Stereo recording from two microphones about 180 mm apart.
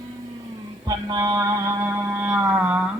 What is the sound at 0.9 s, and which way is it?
Mantra, 20° right (ahead or behind).